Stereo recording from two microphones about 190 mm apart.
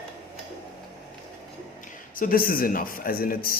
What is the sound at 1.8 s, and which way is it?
A man's voice, 45° left (ahead or behind).